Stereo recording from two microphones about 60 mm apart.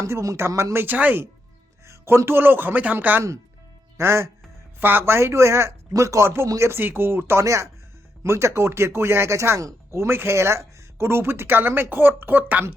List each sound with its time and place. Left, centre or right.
0.0 s speech: right
0.3 s speech: right
0.9 s speech: right
1.9 s a man's voice: right
3.9 s speech: right
4.8 s speech: right
5.9 s a man's voice: right
7.4 s speech: right